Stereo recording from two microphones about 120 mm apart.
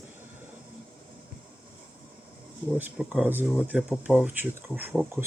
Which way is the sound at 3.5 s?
10° right (ahead or behind).